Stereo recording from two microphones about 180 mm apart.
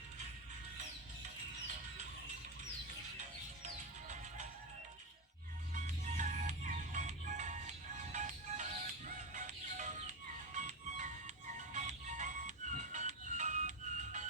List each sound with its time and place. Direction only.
5.7 s music: 40° right (ahead or behind)